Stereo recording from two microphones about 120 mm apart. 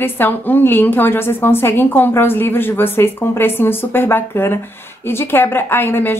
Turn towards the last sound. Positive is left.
turn(degrees=15)  # may be behind; listen again after turning